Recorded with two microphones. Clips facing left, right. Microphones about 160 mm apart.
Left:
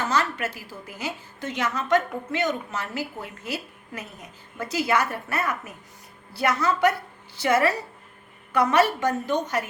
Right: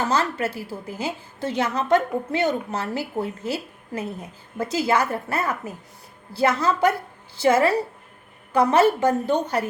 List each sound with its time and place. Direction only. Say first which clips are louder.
0.0 s a woman's voice: right 3 dB; 30° right (ahead or behind)